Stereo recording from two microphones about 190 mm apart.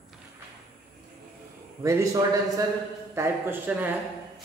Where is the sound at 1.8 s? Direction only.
15° right (ahead or behind).